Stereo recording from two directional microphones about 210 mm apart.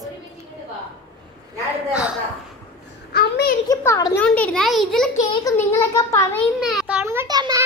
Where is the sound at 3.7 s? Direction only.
15° left (ahead or behind); by 5.1 s centre (ahead or behind).